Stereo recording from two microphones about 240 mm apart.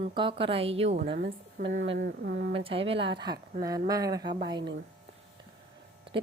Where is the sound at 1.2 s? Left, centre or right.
Right.